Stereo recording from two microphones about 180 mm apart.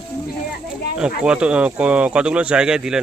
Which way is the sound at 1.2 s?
5° right (ahead or behind).